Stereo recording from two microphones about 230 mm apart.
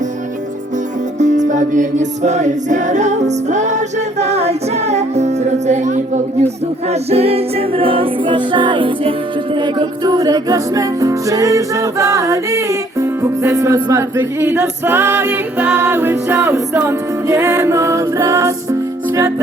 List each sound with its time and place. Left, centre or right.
1.2 s music: right; by 14.0 s centre
14.3 s a capella: centre